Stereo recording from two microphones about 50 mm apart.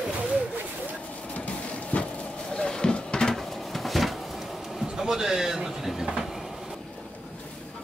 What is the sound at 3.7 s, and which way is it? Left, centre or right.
Cupboard open or close, centre.